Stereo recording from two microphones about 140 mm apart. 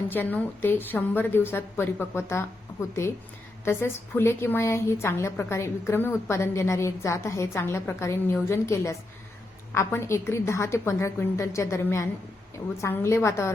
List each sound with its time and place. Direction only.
0.1 s a woman's voice: 15° left (ahead or behind)